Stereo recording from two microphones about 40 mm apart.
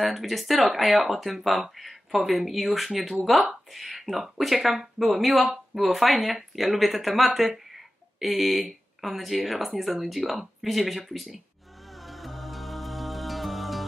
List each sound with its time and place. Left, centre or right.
0.0 s speech: centre
11.9 s music: centre